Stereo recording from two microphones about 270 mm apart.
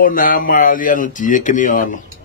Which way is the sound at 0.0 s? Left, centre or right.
Left.